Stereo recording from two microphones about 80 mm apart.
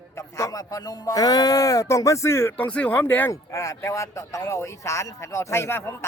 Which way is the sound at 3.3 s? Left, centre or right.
Left.